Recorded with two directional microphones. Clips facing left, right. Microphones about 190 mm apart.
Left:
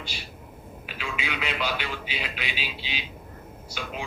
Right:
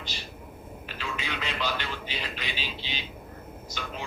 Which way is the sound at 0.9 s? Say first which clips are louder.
Left 2 dB; 10° left (ahead or behind).